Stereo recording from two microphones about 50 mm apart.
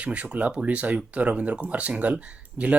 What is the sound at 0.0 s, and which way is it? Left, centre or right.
Speech, right.